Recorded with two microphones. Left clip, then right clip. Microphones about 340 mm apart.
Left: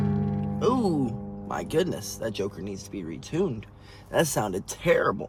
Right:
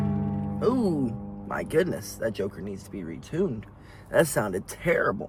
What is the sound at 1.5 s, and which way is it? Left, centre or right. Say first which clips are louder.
Speech: right 1 dB; centre.